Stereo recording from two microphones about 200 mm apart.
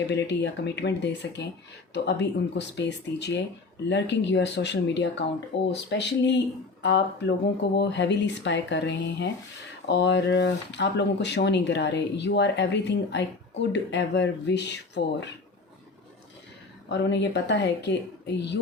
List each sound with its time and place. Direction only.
0.1 s speech: 60° left (ahead or behind)
16.9 s speech: 60° left (ahead or behind)